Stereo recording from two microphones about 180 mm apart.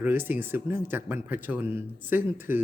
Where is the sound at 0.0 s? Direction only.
10° right (ahead or behind).